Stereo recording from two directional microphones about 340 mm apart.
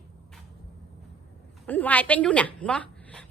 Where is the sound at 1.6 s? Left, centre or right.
Centre.